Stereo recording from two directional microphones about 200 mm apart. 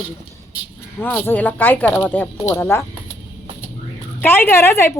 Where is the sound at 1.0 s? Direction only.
10° left (ahead or behind).